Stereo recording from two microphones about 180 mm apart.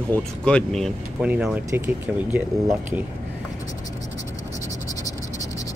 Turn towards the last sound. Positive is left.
turn(degrees=20)  # may be behind; listen again after turning